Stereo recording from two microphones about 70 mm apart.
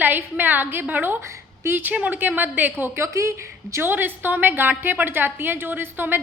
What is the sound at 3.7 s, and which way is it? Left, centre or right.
A woman's voice, right.